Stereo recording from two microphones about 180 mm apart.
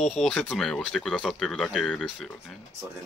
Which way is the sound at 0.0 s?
Centre (ahead or behind).